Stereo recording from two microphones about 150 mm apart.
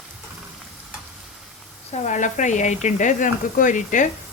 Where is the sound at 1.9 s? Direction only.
55° left (ahead or behind).